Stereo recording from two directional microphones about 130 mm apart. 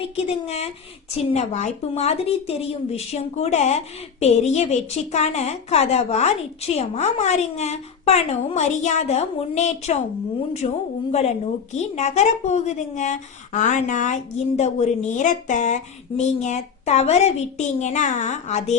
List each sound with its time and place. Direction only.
0.3 s a woman's voice: 55° left (ahead or behind)